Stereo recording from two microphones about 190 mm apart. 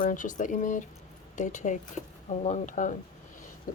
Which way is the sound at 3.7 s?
45° left (ahead or behind).